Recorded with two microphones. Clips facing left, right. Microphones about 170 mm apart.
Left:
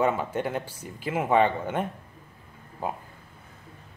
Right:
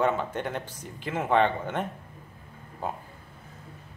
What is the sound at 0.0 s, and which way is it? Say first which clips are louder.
Speech: left 1 dB; 10° left (ahead or behind).